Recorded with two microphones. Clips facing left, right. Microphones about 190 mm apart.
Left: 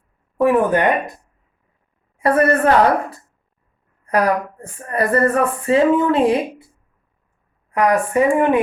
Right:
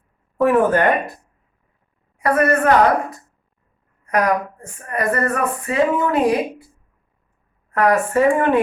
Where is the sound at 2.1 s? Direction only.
30° left (ahead or behind).